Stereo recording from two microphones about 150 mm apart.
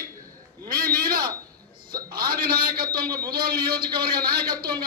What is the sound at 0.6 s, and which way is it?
A man's voice, 80° right.